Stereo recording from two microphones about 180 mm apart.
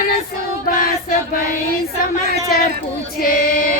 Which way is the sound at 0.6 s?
50° left (ahead or behind).